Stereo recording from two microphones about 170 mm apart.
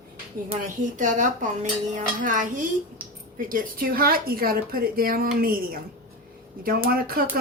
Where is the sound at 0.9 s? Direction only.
45° right (ahead or behind).